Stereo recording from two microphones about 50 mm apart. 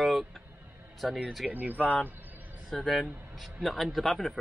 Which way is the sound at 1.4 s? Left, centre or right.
Right.